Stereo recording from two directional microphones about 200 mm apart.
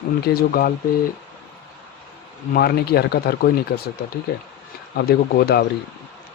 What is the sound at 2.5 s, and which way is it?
Speech, 50° left (ahead or behind).